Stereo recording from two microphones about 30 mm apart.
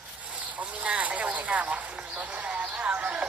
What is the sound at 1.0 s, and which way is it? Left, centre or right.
Speech, right.